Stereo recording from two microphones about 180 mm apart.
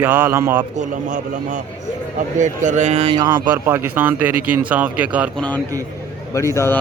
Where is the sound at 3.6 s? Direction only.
15° right (ahead or behind).